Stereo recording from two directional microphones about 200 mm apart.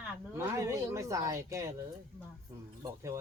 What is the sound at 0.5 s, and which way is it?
Speech, 15° right (ahead or behind).